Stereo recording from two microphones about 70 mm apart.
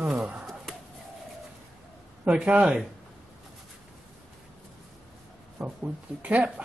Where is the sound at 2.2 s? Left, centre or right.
Centre.